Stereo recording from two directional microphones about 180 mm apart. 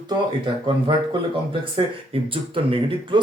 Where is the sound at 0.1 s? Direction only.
25° right (ahead or behind).